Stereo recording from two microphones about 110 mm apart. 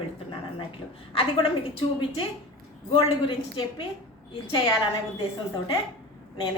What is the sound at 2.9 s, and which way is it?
Speech, 50° left (ahead or behind).